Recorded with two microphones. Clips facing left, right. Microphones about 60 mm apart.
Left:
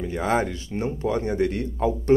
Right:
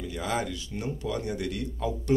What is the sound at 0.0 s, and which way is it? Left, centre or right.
Speech, left.